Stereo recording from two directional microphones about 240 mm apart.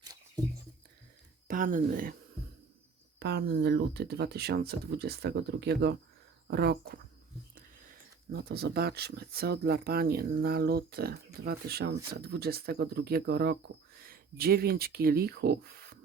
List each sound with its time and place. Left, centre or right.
1.5 s speech: right
3.2 s speech: right
8.3 s speech: right